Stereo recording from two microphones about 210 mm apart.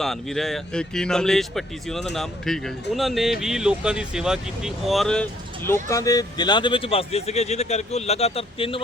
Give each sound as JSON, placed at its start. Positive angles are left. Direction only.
{"t": 0.0, "sound": "speech", "side_deg": 0}